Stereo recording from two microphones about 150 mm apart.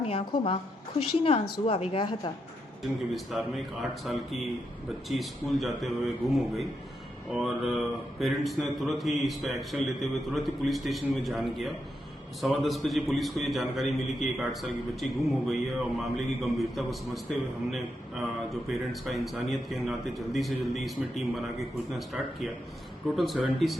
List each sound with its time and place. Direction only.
0.0 s a woman's voice: 40° left (ahead or behind)
3.1 s a man's voice: centre (ahead or behind)